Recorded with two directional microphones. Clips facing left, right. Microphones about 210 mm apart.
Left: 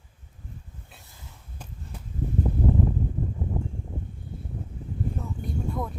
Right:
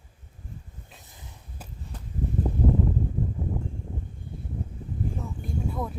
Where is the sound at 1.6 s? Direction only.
5° right (ahead or behind).